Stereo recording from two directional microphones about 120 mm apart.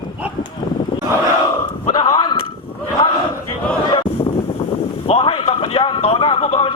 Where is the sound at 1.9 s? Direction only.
35° left (ahead or behind).